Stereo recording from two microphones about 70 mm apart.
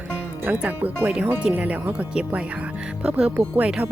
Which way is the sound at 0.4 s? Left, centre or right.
Right.